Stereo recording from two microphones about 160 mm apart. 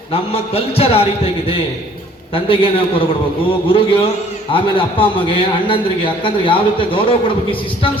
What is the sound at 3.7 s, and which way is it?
A man's voice, 35° left (ahead or behind).